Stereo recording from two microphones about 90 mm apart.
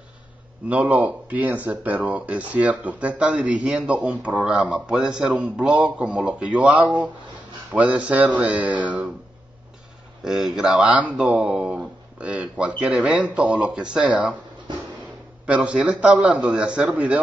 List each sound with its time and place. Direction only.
0.7 s speech: 15° right (ahead or behind)
10.2 s speech: 5° right (ahead or behind)
15.4 s speech: 15° right (ahead or behind)